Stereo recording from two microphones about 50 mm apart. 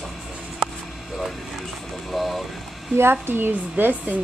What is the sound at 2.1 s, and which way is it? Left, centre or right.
Vehicle, centre.